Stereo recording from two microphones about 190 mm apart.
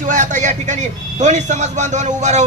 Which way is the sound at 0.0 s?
40° right (ahead or behind).